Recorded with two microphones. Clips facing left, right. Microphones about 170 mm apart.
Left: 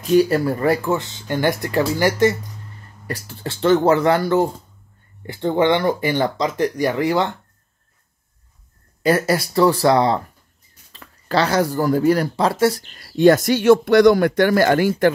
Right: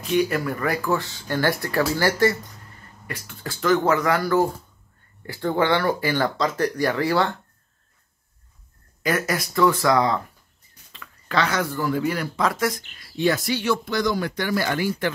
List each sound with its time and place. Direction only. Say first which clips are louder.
0.0 s speech: left 6 dB; 35° left (ahead or behind); by 2.3 s 20° left (ahead or behind)
3.1 s speech: left 6 dB; 35° left (ahead or behind); by 7.3 s 20° left (ahead or behind)
9.0 s speech: left 6 dB; 30° left (ahead or behind); by 15.1 s 45° left (ahead or behind)